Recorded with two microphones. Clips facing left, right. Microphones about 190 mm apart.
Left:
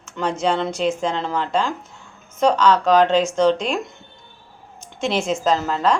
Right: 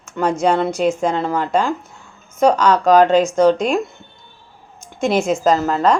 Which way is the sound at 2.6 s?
45° right (ahead or behind).